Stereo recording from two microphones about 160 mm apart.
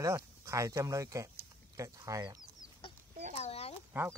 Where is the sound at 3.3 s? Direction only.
40° left (ahead or behind).